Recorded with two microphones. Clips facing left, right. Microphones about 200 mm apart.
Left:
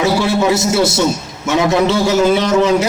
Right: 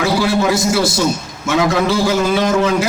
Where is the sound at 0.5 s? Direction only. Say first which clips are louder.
Left 2 dB; 25° left (ahead or behind).